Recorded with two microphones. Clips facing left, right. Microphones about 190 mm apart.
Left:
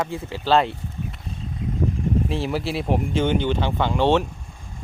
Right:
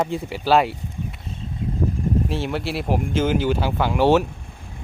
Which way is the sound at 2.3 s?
Centre (ahead or behind).